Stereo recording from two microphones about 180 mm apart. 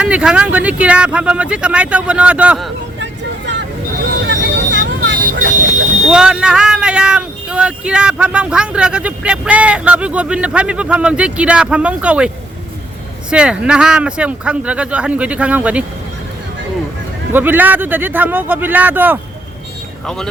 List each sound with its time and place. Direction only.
0.0 s speech: 5° right (ahead or behind)
4.3 s vehicle: 90° right
5.4 s a sound: 45° right (ahead or behind)
6.1 s speech: 5° right (ahead or behind)
13.3 s speech: 5° right (ahead or behind)
17.3 s speech: 10° right (ahead or behind)